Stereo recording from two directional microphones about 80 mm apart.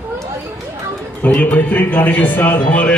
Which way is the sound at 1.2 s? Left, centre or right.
Centre.